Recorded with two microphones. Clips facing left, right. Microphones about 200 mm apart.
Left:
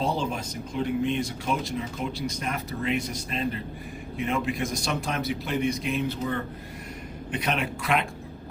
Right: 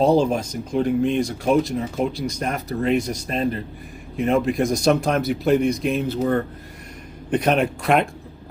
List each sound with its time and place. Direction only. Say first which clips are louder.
0.0 s speech: right 11 dB; 45° right (ahead or behind)